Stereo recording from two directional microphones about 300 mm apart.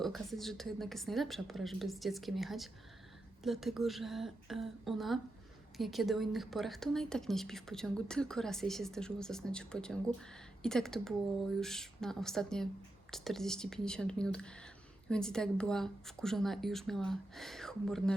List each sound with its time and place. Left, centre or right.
0.0 s a woman's voice: centre